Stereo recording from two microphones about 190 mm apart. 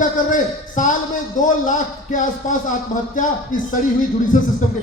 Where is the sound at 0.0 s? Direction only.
40° left (ahead or behind).